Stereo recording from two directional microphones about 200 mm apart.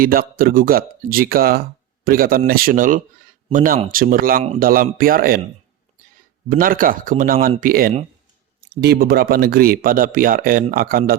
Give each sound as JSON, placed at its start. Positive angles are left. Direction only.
{"t": 0.0, "sound": "speech", "side_deg": -45}
{"t": 6.5, "sound": "speech", "side_deg": -45}